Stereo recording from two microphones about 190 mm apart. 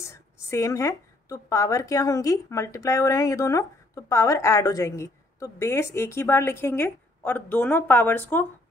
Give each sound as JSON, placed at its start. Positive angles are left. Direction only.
{"t": 0.0, "sound": "a woman's voice", "side_deg": 15}